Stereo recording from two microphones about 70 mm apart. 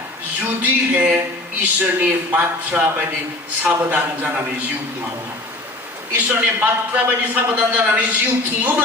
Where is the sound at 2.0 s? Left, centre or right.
Right.